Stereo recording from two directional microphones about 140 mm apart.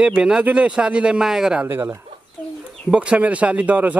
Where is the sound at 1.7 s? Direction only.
20° right (ahead or behind).